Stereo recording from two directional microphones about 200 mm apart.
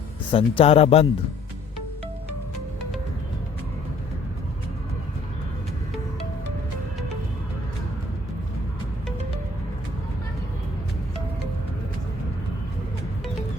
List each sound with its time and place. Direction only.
0.3 s speech: 25° left (ahead or behind)